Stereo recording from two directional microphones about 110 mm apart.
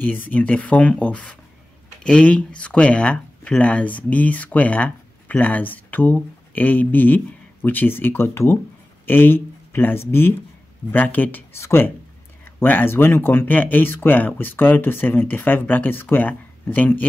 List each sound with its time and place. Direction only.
0.0 s speech: 15° left (ahead or behind)